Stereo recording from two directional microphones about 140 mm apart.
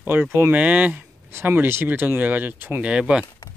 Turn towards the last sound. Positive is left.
turn(degrees=-5)  # may be behind; listen again after turning